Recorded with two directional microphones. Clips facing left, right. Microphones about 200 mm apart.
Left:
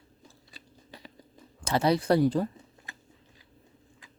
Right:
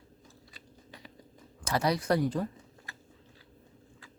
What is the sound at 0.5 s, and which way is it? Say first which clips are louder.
Biting: left 3 dB; 30° left (ahead or behind).